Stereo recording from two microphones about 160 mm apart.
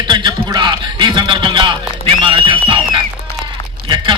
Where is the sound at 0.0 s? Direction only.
30° right (ahead or behind).